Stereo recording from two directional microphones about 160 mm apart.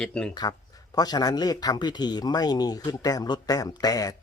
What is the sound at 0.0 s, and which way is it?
Speech, 5° left (ahead or behind).